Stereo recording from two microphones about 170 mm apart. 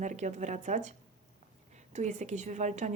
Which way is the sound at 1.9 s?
45° right (ahead or behind).